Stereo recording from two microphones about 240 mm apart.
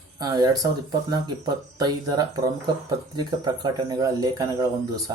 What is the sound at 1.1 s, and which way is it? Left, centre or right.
Speech, centre.